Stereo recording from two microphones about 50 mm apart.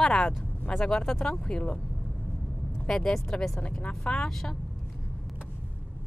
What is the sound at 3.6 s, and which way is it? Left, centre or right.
Speech, left.